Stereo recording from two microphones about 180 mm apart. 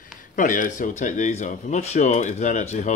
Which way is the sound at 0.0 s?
45° left (ahead or behind).